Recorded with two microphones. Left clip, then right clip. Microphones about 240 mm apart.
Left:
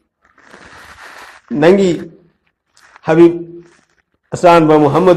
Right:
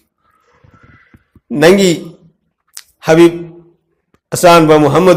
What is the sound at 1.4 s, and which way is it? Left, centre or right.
Speech, right.